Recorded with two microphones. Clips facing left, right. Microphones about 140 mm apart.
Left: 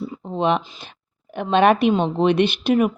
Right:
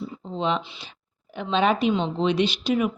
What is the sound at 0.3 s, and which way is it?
Speech, 60° left (ahead or behind).